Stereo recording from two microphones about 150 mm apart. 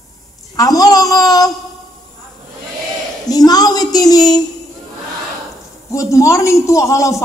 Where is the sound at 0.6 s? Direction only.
25° left (ahead or behind).